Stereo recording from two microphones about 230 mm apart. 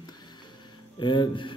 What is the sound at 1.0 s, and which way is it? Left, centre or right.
Speech, left.